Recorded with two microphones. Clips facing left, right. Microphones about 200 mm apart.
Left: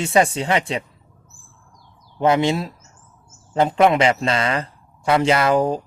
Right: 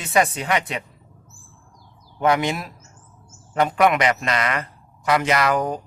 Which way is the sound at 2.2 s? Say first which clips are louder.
Left 3 dB; 30° left (ahead or behind).